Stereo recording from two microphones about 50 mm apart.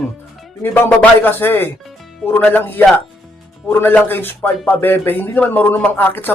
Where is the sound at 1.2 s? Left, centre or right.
Left.